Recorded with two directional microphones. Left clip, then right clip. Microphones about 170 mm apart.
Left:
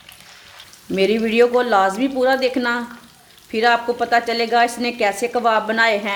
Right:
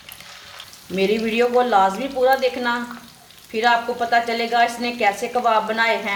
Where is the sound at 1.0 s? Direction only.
70° left (ahead or behind).